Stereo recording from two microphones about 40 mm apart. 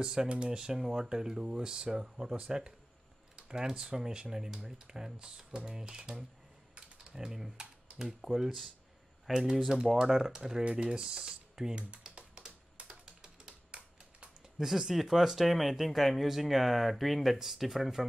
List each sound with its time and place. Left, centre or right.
0.0 s speech: centre
9.3 s speech: centre
9.7 s speech: centre
12.0 s typing: right
14.6 s speech: centre